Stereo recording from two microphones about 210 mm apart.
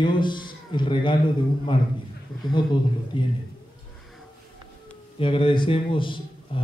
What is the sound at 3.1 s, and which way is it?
Speech, 25° left (ahead or behind).